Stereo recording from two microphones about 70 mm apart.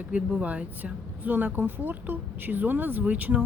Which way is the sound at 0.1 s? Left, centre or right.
Right.